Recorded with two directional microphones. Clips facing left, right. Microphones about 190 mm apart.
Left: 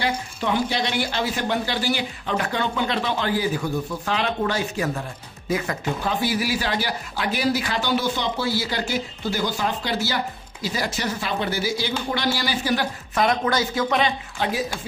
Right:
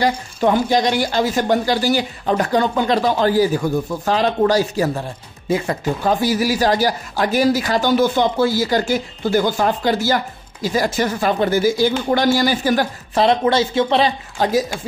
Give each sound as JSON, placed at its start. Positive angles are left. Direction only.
{"t": 0.0, "sound": "speech", "side_deg": -45}
{"t": 6.0, "sound": "speech", "side_deg": -40}
{"t": 13.1, "sound": "speech", "side_deg": -30}